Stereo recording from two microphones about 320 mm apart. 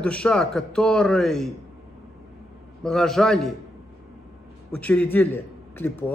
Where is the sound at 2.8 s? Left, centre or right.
Centre.